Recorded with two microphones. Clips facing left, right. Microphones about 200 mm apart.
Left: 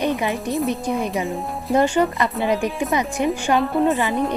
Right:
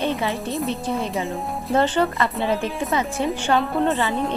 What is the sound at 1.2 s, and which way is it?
Speech, centre (ahead or behind).